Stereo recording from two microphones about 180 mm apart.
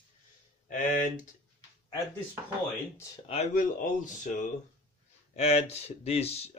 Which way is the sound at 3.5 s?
45° left (ahead or behind).